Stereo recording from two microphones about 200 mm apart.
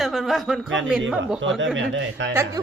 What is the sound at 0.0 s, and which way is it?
Speech, centre (ahead or behind).